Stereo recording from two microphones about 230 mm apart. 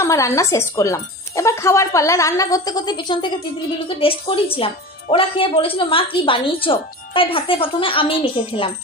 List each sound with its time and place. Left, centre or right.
0.0 s a woman's voice: centre